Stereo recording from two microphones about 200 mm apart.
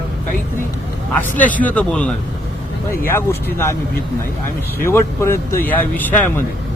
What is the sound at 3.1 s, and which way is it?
Speech, 10° left (ahead or behind).